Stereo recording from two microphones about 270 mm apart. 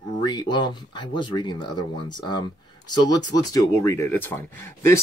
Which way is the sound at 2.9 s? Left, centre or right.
Centre.